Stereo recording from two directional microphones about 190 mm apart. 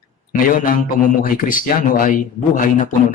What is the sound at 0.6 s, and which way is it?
A man's voice, 45° left (ahead or behind).